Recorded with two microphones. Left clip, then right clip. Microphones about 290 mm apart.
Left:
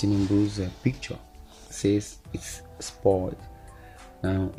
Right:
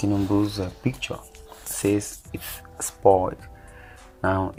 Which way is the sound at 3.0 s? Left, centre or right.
Right.